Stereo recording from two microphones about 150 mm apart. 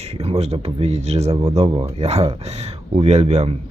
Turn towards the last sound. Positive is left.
turn(degrees=-45)  # may be behind; listen again after turning